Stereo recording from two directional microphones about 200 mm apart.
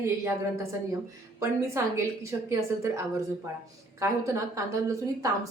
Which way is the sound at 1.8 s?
15° right (ahead or behind).